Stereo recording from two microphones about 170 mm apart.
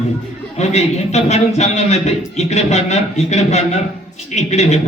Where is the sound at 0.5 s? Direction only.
40° left (ahead or behind).